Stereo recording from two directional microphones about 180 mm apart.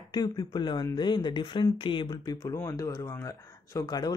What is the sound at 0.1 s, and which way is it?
Speech, 25° left (ahead or behind).